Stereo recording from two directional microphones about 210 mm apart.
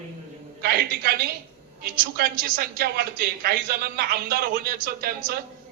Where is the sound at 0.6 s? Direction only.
45° right (ahead or behind).